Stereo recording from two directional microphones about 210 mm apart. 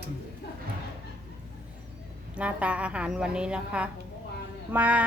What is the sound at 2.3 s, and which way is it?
A woman's voice, 5° right (ahead or behind).